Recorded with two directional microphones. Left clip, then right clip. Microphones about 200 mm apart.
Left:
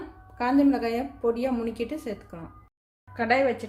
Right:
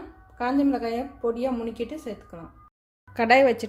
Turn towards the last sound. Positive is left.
turn(degrees=-40)  # may be behind; listen again after turning